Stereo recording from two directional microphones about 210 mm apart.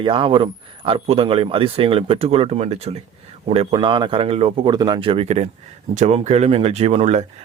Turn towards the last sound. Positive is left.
turn(degrees=-30)  # may be behind; listen again after turning